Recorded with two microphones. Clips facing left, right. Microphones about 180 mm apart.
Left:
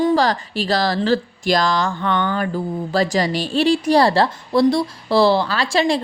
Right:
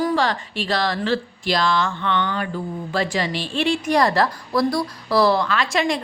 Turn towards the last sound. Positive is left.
turn(degrees=30)  # may be behind; listen again after turning